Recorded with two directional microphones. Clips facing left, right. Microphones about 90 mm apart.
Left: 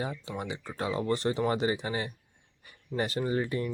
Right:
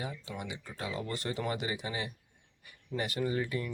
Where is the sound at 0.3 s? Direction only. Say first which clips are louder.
Left 5 dB; 30° left (ahead or behind).